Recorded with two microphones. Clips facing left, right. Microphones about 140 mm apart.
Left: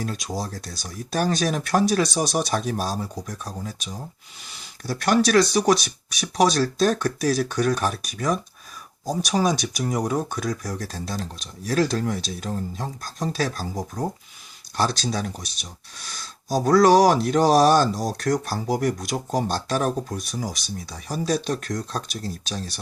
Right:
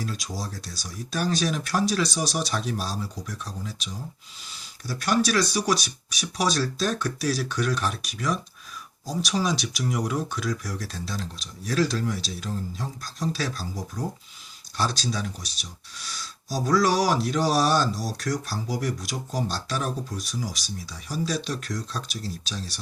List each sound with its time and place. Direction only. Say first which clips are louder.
0.3 s speech: left 4 dB; 50° left (ahead or behind)
4.9 s speech: left 4 dB; 55° left (ahead or behind)